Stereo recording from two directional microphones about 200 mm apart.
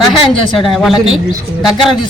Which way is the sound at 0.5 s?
Centre (ahead or behind).